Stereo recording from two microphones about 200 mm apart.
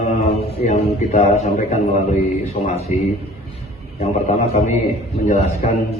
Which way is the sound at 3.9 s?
35° left (ahead or behind).